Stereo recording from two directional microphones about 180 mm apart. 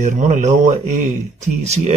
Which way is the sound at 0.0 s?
45° right (ahead or behind).